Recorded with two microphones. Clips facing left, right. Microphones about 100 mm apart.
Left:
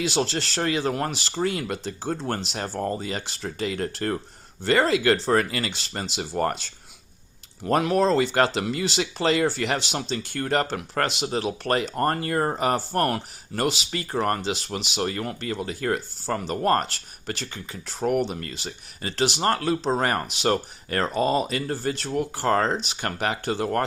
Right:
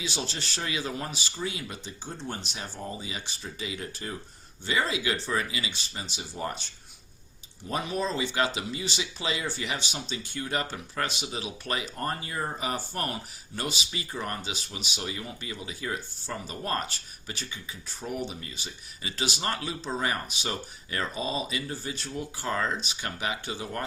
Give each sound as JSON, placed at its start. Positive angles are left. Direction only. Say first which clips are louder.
{"t": 0.0, "sound": "speech", "louder": "left 10 dB", "side_deg": 90}
{"t": 0.6, "sound": "speech", "louder": "left 8 dB", "side_deg": 55}
{"t": 2.7, "sound": "speech", "louder": "left 10 dB", "side_deg": 60}
{"t": 3.6, "sound": "speech", "louder": "left 10 dB", "side_deg": 55}
{"t": 5.7, "sound": "speech", "louder": "left 8 dB", "side_deg": 75}
{"t": 11.3, "sound": "speech", "louder": "left 9 dB", "side_deg": 60}
{"t": 12.9, "sound": "speech", "louder": "left 9 dB", "side_deg": 70}
{"t": 15.0, "sound": "speech", "louder": "left 9 dB", "side_deg": 60}
{"t": 19.0, "sound": "speech", "louder": "left 8 dB", "side_deg": 45}
{"t": 20.2, "sound": "speech", "louder": "left 11 dB", "side_deg": 65}